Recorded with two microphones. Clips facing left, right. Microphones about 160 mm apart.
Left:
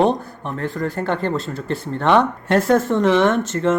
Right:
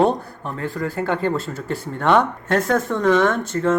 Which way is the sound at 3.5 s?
Centre (ahead or behind).